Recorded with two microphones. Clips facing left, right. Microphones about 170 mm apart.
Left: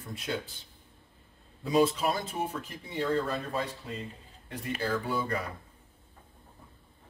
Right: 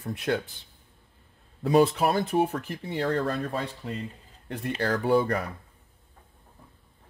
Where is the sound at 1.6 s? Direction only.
65° right (ahead or behind).